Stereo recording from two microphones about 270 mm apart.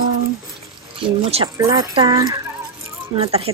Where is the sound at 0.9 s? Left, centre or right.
Right.